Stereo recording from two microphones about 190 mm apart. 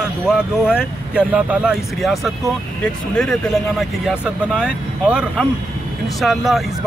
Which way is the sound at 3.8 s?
5° right (ahead or behind).